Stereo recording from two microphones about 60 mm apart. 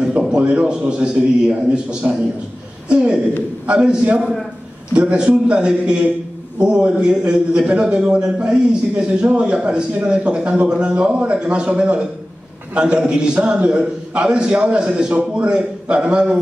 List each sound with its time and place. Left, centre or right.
0.3 s a man's voice: centre
4.2 s a man's voice: centre
4.9 s a man's voice: centre